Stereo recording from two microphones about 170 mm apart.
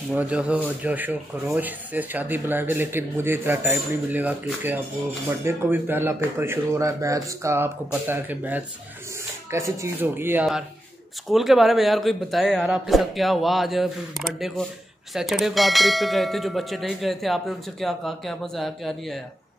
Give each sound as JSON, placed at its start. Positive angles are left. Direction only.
{"t": 0.1, "sound": "speech", "side_deg": -5}
{"t": 11.2, "sound": "speech", "side_deg": 0}